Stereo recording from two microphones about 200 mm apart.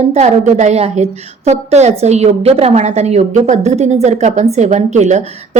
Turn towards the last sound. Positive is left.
turn(degrees=-35)  # may be behind; listen again after turning